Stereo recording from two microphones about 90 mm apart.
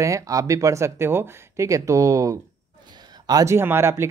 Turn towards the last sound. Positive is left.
turn(degrees=-30)  # may be behind; listen again after turning